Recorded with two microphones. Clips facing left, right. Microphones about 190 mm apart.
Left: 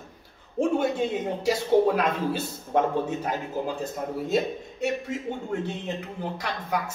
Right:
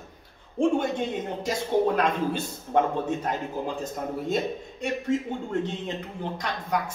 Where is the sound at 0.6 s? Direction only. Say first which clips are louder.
Right 2 dB; 20° left (ahead or behind).